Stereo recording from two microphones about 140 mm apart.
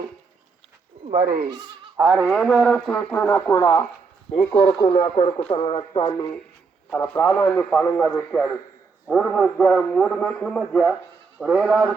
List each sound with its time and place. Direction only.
1.2 s speech: 90° right
2.0 s speech: 25° right (ahead or behind)
2.3 s a man's voice: centre (ahead or behind)
3.6 s speech: 25° left (ahead or behind)
6.9 s a man's voice: 10° left (ahead or behind)